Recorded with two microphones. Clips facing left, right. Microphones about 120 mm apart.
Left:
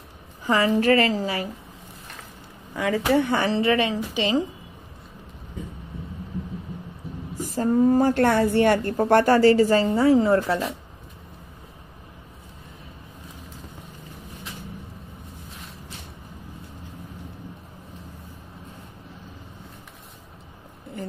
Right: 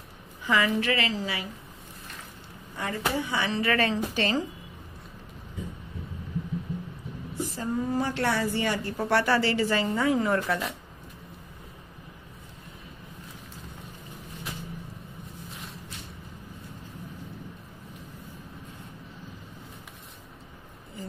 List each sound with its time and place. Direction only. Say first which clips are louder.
0.5 s a woman's voice: left 6 dB; 40° left (ahead or behind)
2.8 s speech: left 9 dB; 80° left; by 3.4 s 60° left (ahead or behind)
3.4 s a woman's voice: left 6 dB; 30° left (ahead or behind)
3.7 s a woman's voice: left 3 dB; 15° left (ahead or behind)
7.3 s a woman's voice: left 9 dB; 45° left (ahead or behind)
9.8 s a woman's voice: left 7 dB; 30° left (ahead or behind)